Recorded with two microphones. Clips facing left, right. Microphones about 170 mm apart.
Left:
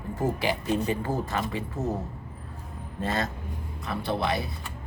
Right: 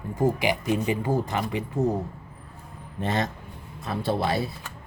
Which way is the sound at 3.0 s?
20° right (ahead or behind).